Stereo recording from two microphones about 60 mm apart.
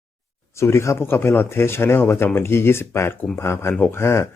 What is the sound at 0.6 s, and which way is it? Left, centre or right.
Speech, left.